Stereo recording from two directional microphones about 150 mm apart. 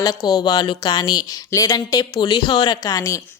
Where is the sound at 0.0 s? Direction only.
25° left (ahead or behind).